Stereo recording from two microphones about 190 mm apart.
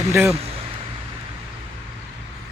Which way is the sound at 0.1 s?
15° right (ahead or behind).